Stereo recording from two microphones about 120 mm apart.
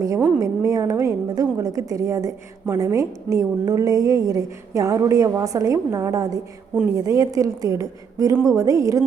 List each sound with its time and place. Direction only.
0.0 s a woman's voice: 30° right (ahead or behind)